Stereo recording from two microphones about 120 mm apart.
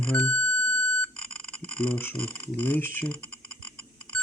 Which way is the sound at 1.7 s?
10° left (ahead or behind).